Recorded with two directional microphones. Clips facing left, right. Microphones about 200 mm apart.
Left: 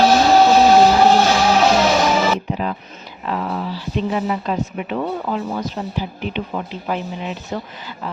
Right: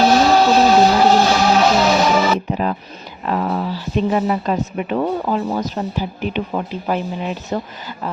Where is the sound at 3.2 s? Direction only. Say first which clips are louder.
Right 3 dB; 45° right (ahead or behind).